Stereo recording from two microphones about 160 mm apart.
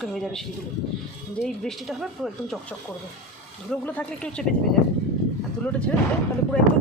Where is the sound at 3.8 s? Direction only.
10° left (ahead or behind).